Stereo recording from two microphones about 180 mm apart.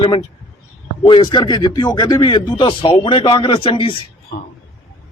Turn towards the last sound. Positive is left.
turn(degrees=65)  # may be behind; listen again after turning